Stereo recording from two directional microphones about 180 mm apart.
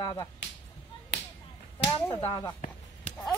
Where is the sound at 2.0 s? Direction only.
20° left (ahead or behind).